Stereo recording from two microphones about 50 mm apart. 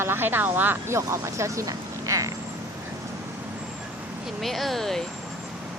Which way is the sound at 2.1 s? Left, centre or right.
Right.